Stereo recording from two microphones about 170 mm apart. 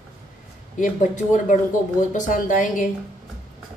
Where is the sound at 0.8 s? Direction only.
45° left (ahead or behind).